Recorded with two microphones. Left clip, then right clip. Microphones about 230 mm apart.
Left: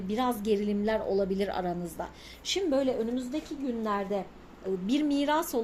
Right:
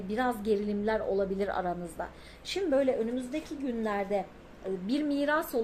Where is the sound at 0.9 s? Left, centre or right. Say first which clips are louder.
Left 1 dB; left.